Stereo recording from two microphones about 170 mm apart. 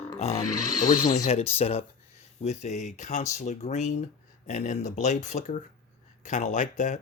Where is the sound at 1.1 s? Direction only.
40° left (ahead or behind).